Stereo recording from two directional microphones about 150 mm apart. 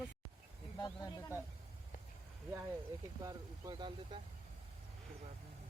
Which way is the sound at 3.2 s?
25° right (ahead or behind).